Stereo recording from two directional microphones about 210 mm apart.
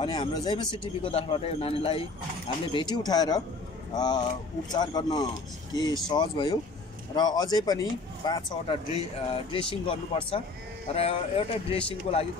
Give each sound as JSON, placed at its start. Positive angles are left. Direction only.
{"t": 0.0, "sound": "speech", "side_deg": 20}